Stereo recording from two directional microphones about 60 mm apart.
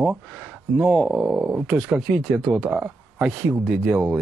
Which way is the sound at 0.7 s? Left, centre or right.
Centre.